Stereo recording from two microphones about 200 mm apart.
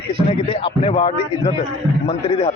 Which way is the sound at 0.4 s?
30° left (ahead or behind).